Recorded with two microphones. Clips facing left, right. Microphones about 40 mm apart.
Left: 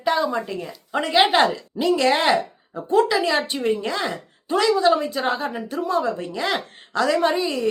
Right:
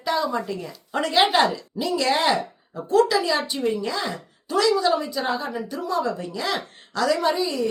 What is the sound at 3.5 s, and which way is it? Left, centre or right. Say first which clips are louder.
A woman's voice: left 2 dB; left.